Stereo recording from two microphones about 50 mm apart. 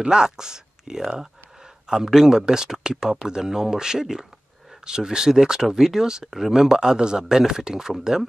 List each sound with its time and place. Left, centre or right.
0.0 s speech: centre